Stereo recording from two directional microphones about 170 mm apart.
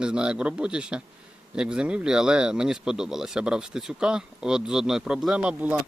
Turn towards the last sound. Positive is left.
turn(degrees=-10)  # may be behind; listen again after turning